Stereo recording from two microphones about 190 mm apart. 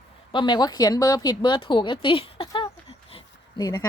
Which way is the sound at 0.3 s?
25° left (ahead or behind).